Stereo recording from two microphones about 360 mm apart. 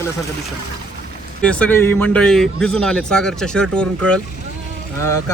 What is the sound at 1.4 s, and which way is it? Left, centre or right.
Speech, centre.